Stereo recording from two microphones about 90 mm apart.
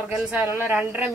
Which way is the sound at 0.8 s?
15° right (ahead or behind).